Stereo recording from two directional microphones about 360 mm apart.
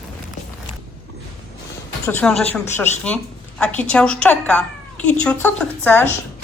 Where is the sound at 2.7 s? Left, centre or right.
Centre.